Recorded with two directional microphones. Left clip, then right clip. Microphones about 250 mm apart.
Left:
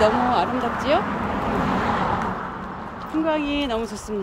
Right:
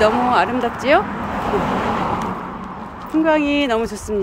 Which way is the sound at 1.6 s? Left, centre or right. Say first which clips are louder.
Right 2 dB; right.